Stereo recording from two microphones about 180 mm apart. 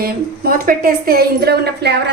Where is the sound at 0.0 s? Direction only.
55° right (ahead or behind).